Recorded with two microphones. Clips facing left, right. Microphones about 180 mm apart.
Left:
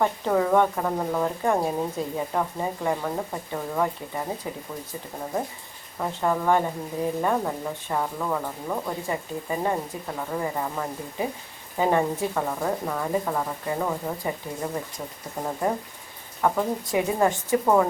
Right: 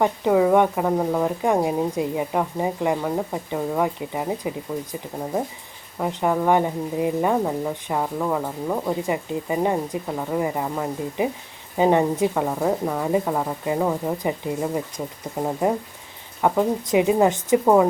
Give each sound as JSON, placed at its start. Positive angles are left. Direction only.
{"t": 0.0, "sound": "speech", "side_deg": -15}
{"t": 6.0, "sound": "a woman's voice", "side_deg": -15}
{"t": 16.4, "sound": "a woman's voice", "side_deg": -20}